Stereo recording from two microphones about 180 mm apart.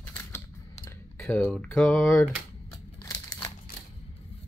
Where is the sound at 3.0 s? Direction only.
20° left (ahead or behind).